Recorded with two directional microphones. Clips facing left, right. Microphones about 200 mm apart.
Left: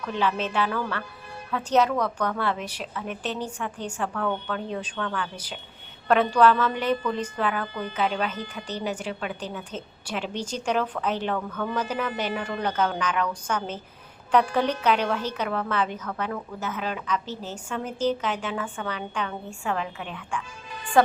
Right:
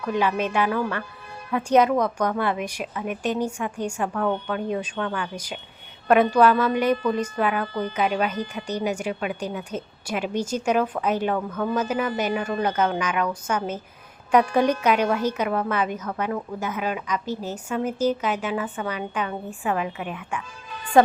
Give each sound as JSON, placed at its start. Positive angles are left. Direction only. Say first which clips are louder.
{"t": 0.1, "sound": "a woman's voice", "louder": "right 3 dB", "side_deg": -10}
{"t": 4.1, "sound": "a woman's voice", "louder": "right 3 dB", "side_deg": -25}
{"t": 4.4, "sound": "a woman's voice", "louder": "right 4 dB", "side_deg": -15}